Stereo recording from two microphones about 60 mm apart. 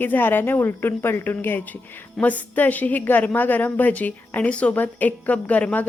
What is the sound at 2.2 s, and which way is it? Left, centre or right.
A woman's voice, left.